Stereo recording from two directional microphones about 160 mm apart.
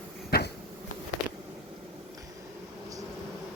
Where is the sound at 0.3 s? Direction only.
80° left.